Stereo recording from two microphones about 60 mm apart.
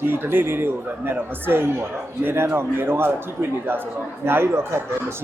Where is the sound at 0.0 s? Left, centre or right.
Right.